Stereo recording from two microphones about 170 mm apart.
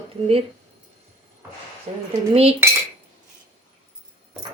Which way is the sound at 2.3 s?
35° right (ahead or behind).